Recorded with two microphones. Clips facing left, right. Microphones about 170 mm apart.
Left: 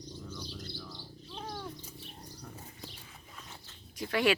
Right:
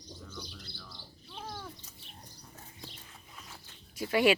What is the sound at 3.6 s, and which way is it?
Zipper, 10° right (ahead or behind).